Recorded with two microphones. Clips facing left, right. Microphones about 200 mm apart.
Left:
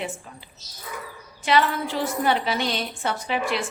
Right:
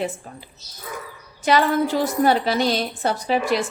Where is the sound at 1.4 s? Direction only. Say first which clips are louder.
Right 4 dB; 45° right (ahead or behind).